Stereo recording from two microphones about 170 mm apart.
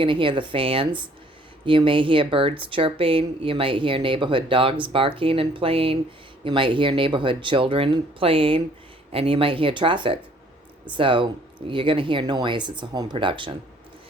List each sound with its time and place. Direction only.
0.0 s speech: 30° right (ahead or behind)